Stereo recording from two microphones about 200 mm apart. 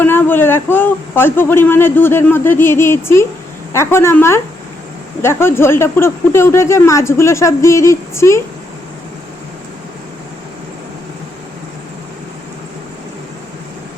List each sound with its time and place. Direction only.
0.0 s a man's voice: 10° left (ahead or behind)